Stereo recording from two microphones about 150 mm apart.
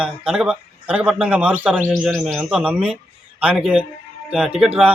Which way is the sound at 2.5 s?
10° right (ahead or behind).